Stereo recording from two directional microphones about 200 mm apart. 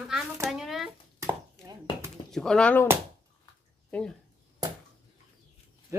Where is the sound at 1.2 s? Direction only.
15° right (ahead or behind).